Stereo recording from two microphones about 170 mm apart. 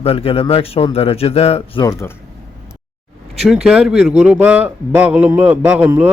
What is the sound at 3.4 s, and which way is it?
A man's voice, centre (ahead or behind).